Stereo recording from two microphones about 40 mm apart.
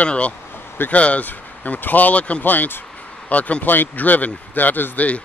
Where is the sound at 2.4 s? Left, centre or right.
Left.